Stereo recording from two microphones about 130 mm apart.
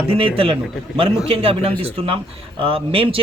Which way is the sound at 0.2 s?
45° right (ahead or behind).